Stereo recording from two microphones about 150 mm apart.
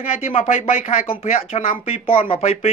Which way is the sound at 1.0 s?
40° left (ahead or behind).